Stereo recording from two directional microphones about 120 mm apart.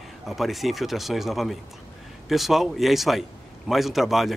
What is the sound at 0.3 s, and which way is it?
A man's voice, centre (ahead or behind).